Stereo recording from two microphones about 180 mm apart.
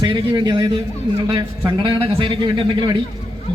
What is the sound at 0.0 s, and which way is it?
Speech, 25° right (ahead or behind).